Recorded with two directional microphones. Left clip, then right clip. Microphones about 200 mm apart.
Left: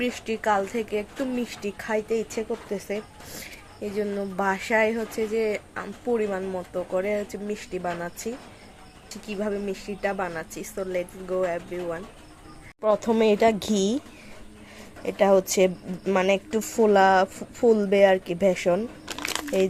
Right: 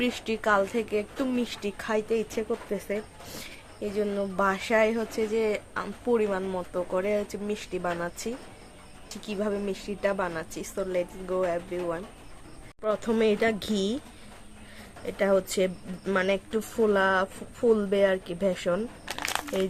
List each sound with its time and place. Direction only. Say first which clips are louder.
0.0 s speech: left 1 dB; 10° right (ahead or behind)
12.8 s speech: left 4 dB; 15° left (ahead or behind)
15.0 s speech: left 5 dB; 15° left (ahead or behind)
19.1 s crumpling: even; 15° right (ahead or behind)